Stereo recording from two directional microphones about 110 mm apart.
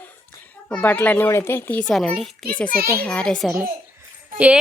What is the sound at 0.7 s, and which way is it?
Speech, 15° left (ahead or behind).